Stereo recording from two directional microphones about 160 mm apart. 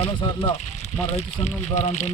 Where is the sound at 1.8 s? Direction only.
45° left (ahead or behind).